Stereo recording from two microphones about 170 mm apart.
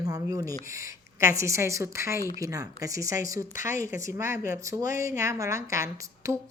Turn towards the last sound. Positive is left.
turn(degrees=-15)  # may be behind; listen again after turning